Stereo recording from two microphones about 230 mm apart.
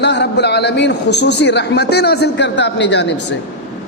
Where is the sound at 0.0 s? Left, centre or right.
Left.